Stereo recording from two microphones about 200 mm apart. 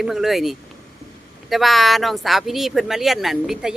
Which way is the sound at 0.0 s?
Centre (ahead or behind).